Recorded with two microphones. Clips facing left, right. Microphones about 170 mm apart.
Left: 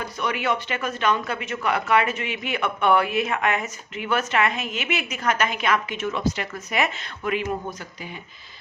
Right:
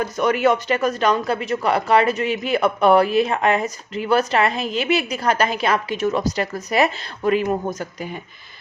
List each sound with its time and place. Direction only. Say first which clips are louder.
0.2 s speech: right 8 dB; 45° right (ahead or behind)